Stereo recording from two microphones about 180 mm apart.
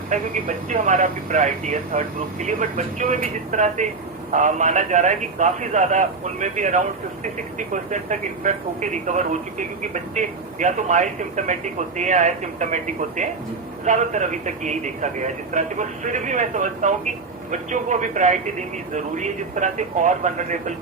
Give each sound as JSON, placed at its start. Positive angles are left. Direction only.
{"t": 0.1, "sound": "speech", "side_deg": -45}